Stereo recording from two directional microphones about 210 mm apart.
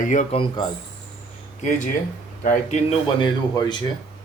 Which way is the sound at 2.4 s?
35° left (ahead or behind).